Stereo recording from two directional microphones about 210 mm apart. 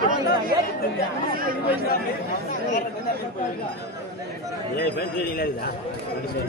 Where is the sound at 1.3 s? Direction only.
45° right (ahead or behind).